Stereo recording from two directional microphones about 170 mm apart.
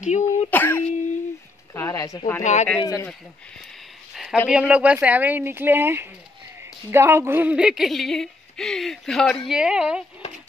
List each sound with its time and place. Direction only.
0.0 s throat clearing: 45° left (ahead or behind)
0.5 s cough: 10° left (ahead or behind)
1.7 s a woman's voice: 15° left (ahead or behind)
2.4 s speech: 40° left (ahead or behind)
2.8 s speech: 20° left (ahead or behind)
4.1 s a sound: centre (ahead or behind)
4.5 s a woman's voice: 5° right (ahead or behind)